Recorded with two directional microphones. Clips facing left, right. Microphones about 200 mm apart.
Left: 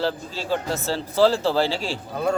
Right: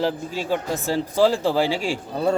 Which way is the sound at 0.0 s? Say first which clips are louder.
Right 2 dB; 15° right (ahead or behind).